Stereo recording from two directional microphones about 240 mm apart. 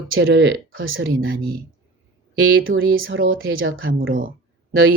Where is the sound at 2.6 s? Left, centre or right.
Right.